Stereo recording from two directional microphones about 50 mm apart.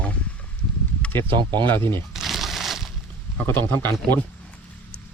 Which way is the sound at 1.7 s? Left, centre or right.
Left.